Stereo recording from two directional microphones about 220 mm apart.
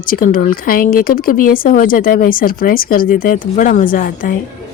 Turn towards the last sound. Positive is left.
turn(degrees=40)  # may be behind; listen again after turning